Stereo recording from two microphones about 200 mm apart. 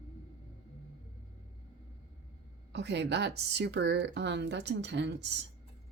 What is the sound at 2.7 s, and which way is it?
A woman's voice, 60° right (ahead or behind).